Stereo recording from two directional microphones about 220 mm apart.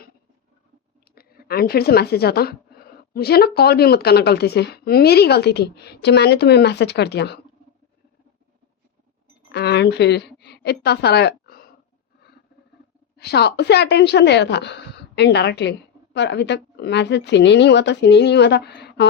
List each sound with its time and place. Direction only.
1.1 s a woman's voice: 45° left (ahead or behind)
9.5 s a woman's voice: 50° left (ahead or behind)
13.1 s a woman's voice: 45° left (ahead or behind)